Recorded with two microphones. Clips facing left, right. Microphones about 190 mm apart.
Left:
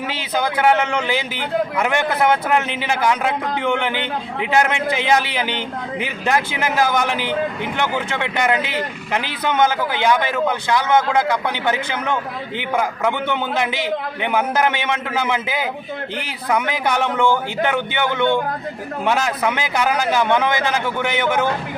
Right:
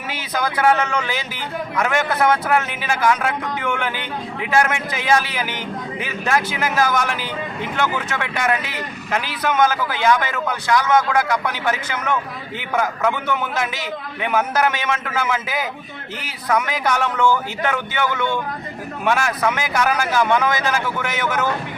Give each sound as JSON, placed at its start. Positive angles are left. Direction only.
{"t": 0.6, "sound": "a man's voice", "side_deg": 15}
{"t": 17.0, "sound": "speech", "side_deg": 15}